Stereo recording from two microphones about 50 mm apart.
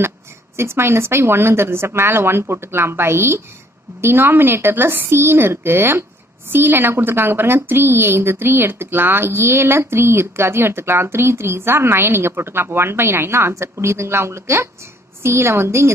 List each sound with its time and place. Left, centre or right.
0.6 s a woman's voice: right
4.0 s a woman's voice: right